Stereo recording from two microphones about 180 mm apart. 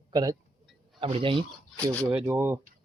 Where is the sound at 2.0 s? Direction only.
10° right (ahead or behind).